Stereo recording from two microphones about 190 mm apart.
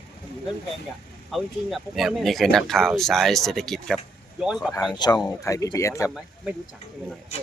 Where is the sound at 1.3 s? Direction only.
Centre (ahead or behind).